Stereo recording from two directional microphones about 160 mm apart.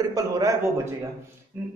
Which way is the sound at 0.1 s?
20° right (ahead or behind).